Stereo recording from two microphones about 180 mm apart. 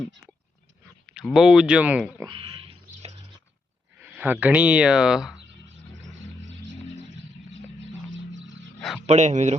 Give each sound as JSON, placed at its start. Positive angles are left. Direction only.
{"t": 1.0, "sound": "speech", "side_deg": 0}
{"t": 2.2, "sound": "pig", "side_deg": -30}
{"t": 4.0, "sound": "speech", "side_deg": -10}
{"t": 7.8, "sound": "a sound", "side_deg": -90}
{"t": 9.0, "sound": "speech", "side_deg": -40}